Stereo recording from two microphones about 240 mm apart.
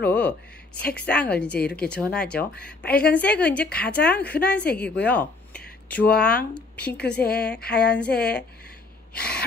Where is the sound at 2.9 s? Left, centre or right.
Left.